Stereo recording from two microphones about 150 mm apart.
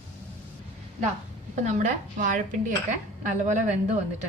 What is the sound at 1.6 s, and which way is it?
A woman's voice, 55° right (ahead or behind).